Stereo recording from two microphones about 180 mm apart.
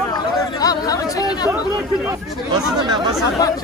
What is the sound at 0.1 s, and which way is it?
Chatter, 20° left (ahead or behind).